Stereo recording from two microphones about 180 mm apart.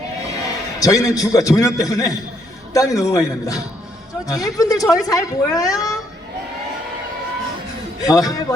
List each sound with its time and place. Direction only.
0.8 s a man's voice: 20° left (ahead or behind)
8.0 s a man's voice: 20° left (ahead or behind)